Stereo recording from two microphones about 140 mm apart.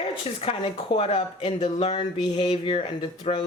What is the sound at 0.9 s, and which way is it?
Speech, 45° left (ahead or behind).